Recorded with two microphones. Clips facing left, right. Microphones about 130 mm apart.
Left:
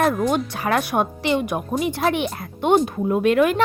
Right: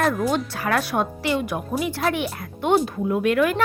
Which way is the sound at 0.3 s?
20° left (ahead or behind).